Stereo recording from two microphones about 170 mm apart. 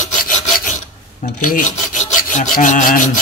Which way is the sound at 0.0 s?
55° left (ahead or behind).